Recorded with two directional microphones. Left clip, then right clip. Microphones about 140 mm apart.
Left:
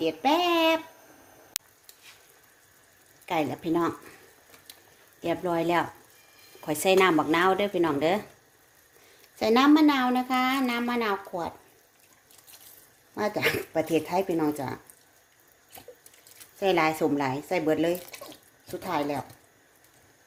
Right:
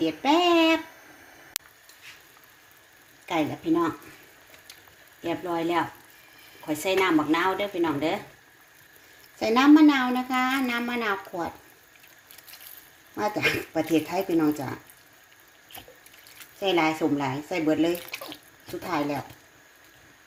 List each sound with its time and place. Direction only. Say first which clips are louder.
0.0 s speech: right 2 dB; 5° left (ahead or behind)
3.2 s speech: right 1 dB; 15° left (ahead or behind)
5.2 s speech: left 1 dB; 30° left (ahead or behind)
6.7 s speech: left 2 dB; 45° left (ahead or behind)
9.4 s speech: right 2 dB; 15° left (ahead or behind)
13.1 s speech: right 1 dB; 15° left (ahead or behind)
16.6 s speech: even; 20° left (ahead or behind)